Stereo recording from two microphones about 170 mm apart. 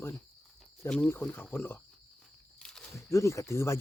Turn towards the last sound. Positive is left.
turn(degrees=15)  # may be behind; listen again after turning